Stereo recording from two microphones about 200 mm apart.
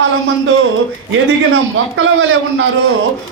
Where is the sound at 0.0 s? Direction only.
70° right (ahead or behind).